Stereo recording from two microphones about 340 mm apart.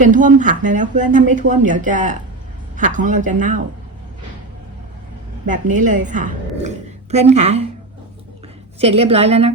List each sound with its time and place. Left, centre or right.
0.0 s speech: right
5.5 s speech: right
8.8 s a woman's voice: centre